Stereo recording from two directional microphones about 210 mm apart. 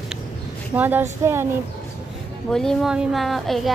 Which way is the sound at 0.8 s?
10° right (ahead or behind).